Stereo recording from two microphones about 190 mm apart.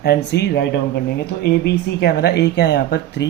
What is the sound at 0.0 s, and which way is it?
Speech, 60° left (ahead or behind).